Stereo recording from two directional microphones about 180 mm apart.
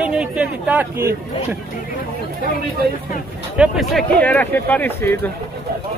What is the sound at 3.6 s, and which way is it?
Speech, centre (ahead or behind).